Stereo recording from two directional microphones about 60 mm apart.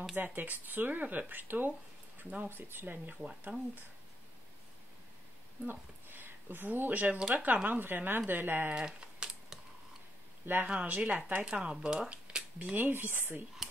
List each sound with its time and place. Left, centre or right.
0.1 s speech: right
5.7 s speech: right
7.2 s speech: centre
7.6 s speech: right
8.7 s typing: centre
10.4 s speech: right
10.7 s speech: centre
11.4 s speech: centre
12.7 s speech: right